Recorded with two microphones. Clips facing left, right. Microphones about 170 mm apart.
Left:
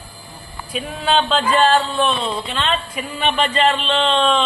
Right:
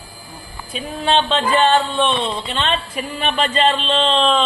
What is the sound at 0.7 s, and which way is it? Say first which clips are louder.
A man's voice: even; centre (ahead or behind).